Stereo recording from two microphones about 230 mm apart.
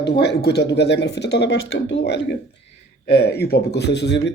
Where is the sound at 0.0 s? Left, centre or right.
Left.